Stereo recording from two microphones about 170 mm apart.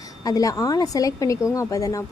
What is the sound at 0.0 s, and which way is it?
Speech, 20° left (ahead or behind).